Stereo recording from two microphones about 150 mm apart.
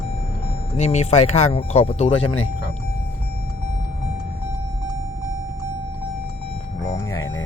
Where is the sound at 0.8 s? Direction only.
45° left (ahead or behind).